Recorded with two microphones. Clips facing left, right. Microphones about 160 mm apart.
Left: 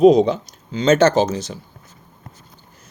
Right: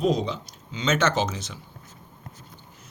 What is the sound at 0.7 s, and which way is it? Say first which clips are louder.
Speech: left 9 dB; 40° left (ahead or behind).